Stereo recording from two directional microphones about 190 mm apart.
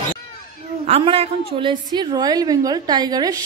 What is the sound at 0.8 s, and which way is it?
A woman's voice, 30° right (ahead or behind).